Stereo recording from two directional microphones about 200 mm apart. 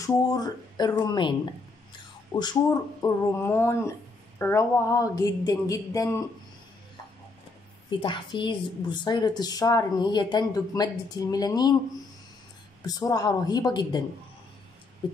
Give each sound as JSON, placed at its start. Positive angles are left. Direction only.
{"t": 0.0, "sound": "a woman's voice", "side_deg": 15}
{"t": 2.3, "sound": "speech", "side_deg": 20}
{"t": 8.0, "sound": "a woman's voice", "side_deg": 25}
{"t": 12.8, "sound": "a woman's voice", "side_deg": 20}